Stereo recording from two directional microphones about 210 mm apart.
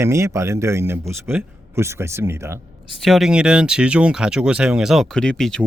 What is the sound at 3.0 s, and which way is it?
Speech, centre (ahead or behind).